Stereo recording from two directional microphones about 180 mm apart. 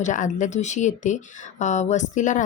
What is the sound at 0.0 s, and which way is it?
Speech, 45° left (ahead or behind).